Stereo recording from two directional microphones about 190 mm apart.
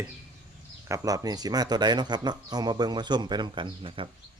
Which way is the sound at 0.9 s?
15° right (ahead or behind).